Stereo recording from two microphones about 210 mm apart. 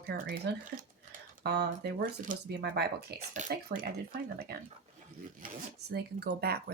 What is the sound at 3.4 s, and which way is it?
Speech, 35° right (ahead or behind).